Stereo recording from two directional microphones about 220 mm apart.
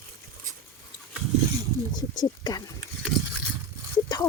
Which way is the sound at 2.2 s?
15° left (ahead or behind).